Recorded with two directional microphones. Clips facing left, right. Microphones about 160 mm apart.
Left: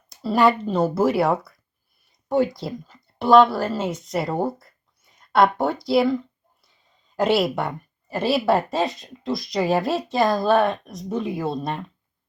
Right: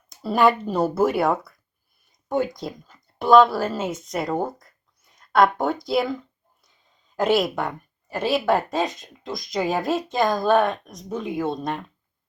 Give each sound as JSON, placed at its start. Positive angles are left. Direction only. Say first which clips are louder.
{"t": 0.2, "sound": "speech", "louder": "left 1 dB", "side_deg": 0}
{"t": 2.6, "sound": "speech", "louder": "left 2 dB", "side_deg": 0}
{"t": 7.2, "sound": "speech", "louder": "left 1 dB", "side_deg": 5}